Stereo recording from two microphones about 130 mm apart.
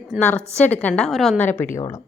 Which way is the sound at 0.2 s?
10° left (ahead or behind).